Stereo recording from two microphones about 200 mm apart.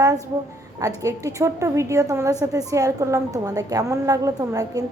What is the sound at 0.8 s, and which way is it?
A woman's voice, 15° right (ahead or behind).